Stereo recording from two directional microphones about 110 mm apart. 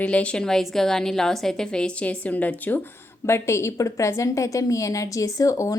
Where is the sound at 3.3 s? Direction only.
25° left (ahead or behind).